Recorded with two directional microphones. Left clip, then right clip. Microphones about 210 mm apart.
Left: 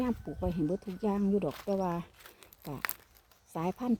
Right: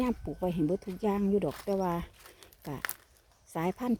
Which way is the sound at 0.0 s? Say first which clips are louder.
Right 2 dB; 20° right (ahead or behind).